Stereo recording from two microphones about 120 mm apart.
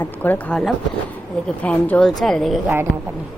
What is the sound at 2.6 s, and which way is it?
Speech, 20° right (ahead or behind).